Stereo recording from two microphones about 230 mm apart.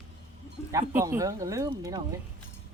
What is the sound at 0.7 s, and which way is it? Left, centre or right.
Speech, centre.